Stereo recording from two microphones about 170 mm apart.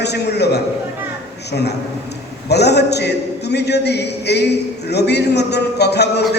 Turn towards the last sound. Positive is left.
turn(degrees=75)  # may be behind; listen again after turning